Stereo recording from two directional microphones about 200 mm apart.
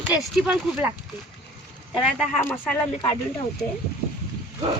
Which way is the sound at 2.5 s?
10° left (ahead or behind).